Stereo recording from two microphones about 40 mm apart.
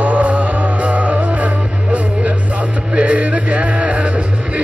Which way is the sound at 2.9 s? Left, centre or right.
Right.